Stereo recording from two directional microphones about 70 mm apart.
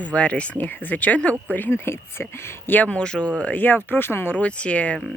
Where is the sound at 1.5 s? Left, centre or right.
Left; by 3.3 s centre.